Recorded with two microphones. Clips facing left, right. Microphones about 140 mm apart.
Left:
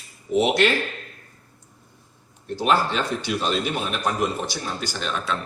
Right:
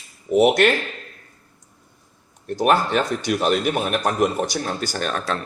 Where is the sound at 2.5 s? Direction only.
50° right (ahead or behind).